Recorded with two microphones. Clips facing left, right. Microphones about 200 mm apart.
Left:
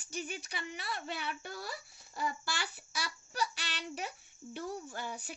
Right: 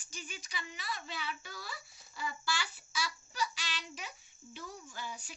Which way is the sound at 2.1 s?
55° left (ahead or behind).